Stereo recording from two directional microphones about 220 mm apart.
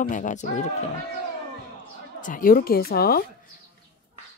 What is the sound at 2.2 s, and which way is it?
Speech, 40° left (ahead or behind).